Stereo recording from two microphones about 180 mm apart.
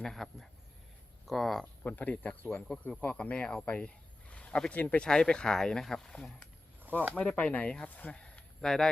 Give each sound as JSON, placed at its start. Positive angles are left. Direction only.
{"t": 0.0, "sound": "speech", "side_deg": 0}